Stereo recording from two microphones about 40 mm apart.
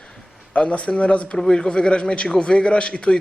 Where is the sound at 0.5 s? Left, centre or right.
Left.